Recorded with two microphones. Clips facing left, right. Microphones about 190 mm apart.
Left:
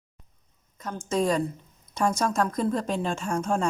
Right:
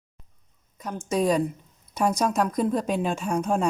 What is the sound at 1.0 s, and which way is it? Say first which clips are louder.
Speech: right 2 dB; 15° right (ahead or behind).